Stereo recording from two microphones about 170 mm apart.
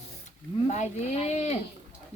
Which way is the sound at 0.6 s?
45° left (ahead or behind).